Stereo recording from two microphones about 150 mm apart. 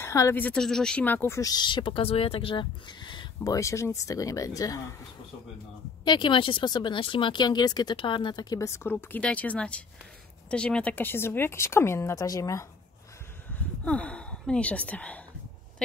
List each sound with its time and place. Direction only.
0.0 s a woman's voice: 20° left (ahead or behind)
3.5 s a woman's voice: 20° left (ahead or behind)
6.0 s a woman's voice: 30° left (ahead or behind)
13.8 s speech: 10° left (ahead or behind)